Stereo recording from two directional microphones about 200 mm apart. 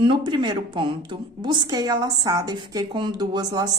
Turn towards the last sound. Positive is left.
turn(degrees=-20)  # may be behind; listen again after turning